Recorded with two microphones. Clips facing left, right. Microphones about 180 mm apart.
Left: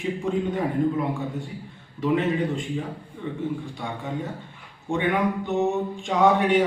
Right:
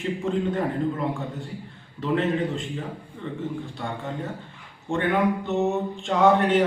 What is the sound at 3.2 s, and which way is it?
Speech, 10° left (ahead or behind).